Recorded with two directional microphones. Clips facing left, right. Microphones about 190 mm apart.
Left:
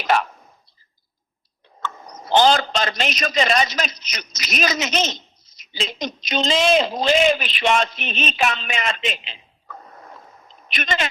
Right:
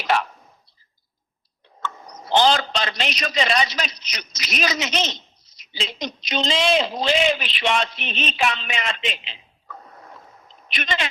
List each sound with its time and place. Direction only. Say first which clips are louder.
0.1 s whispering: left 2 dB; 45° left (ahead or behind)
1.8 s a man's voice: left 1 dB; 45° left (ahead or behind)
10.7 s a man's voice: left 2 dB; 45° left (ahead or behind)